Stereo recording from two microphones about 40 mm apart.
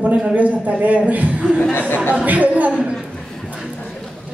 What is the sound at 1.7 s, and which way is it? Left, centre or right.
Speech, left.